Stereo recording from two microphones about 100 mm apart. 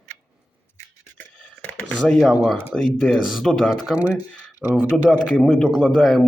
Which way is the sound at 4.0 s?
15° right (ahead or behind).